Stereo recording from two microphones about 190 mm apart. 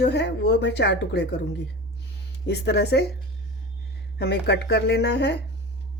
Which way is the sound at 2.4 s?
60° left (ahead or behind).